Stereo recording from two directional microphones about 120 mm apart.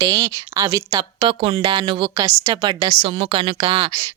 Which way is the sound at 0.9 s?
45° right (ahead or behind).